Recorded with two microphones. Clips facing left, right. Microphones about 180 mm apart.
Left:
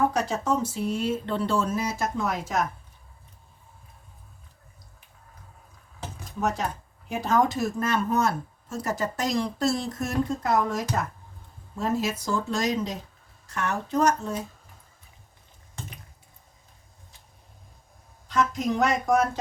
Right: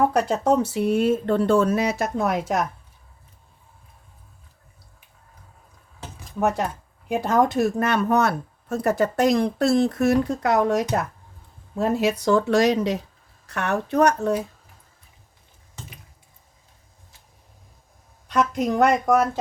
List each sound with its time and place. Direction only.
0.1 s speech: 60° right (ahead or behind)
7.1 s speech: 55° right (ahead or behind)
18.3 s speech: 60° right (ahead or behind)